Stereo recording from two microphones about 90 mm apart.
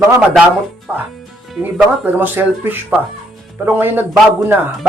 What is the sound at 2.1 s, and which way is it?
Speech, 25° right (ahead or behind).